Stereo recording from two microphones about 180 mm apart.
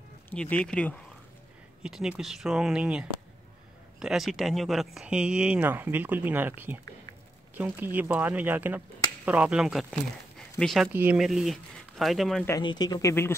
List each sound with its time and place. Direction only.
0.3 s speech: 5° left (ahead or behind)
12.4 s speech: 20° left (ahead or behind)